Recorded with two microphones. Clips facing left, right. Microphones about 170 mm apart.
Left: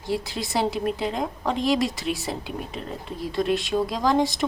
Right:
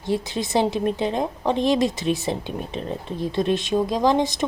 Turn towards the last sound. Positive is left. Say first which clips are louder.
# right 2 dB
turn(degrees=-20)  # may be behind; listen again after turning